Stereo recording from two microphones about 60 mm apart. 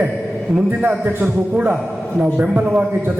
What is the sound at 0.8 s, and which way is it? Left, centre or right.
A man's voice, right.